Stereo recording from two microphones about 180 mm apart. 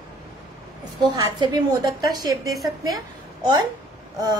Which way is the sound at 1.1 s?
20° right (ahead or behind).